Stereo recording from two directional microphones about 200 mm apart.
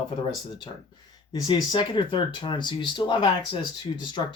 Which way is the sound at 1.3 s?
20° left (ahead or behind).